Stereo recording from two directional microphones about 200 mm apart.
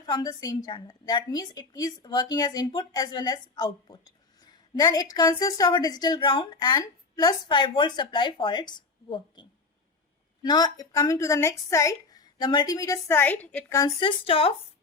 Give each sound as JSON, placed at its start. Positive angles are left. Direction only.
{"t": 0.0, "sound": "a woman's voice", "side_deg": 20}
{"t": 14.0, "sound": "a woman's voice", "side_deg": 25}